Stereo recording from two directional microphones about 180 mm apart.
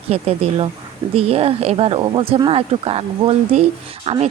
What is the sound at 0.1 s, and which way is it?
Speech, 35° right (ahead or behind).